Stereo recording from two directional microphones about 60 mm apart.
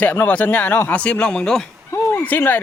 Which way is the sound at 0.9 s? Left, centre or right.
Left.